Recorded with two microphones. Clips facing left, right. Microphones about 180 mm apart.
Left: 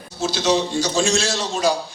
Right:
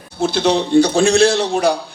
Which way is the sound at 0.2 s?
60° right (ahead or behind).